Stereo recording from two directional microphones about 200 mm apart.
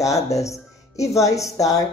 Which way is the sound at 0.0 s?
15° left (ahead or behind).